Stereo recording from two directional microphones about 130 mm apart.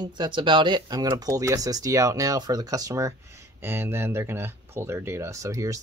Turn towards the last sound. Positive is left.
turn(degrees=-25)  # may be behind; listen again after turning